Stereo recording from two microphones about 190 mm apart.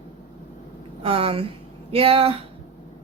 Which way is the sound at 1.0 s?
30° right (ahead or behind).